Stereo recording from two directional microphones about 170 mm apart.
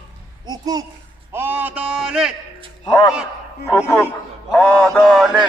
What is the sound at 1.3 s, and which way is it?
A man's voice, 10° right (ahead or behind).